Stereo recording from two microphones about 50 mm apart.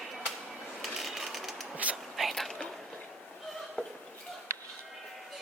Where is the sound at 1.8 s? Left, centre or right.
Right.